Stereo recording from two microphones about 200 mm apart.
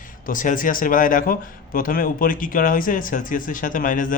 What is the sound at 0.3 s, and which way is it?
Speech, 40° left (ahead or behind).